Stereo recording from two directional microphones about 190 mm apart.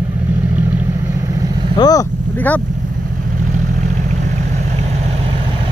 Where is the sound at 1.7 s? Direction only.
20° left (ahead or behind).